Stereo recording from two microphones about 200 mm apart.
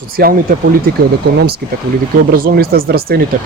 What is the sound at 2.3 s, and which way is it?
Speech, 45° right (ahead or behind).